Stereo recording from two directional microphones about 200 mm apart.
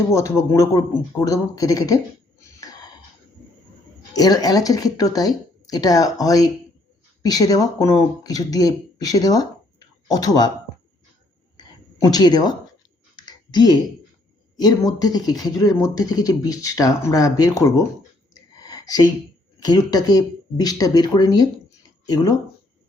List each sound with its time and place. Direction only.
0.1 s speech: 15° left (ahead or behind)
2.4 s a sound: 20° left (ahead or behind)
4.1 s speech: 20° left (ahead or behind)
12.0 s speech: 20° left (ahead or behind)
13.1 s clicking: 20° left (ahead or behind)
14.5 s speech: 20° left (ahead or behind)
18.6 s a sound: 20° left (ahead or behind)
19.5 s speech: 20° left (ahead or behind)
21.8 s a sound: 20° left (ahead or behind)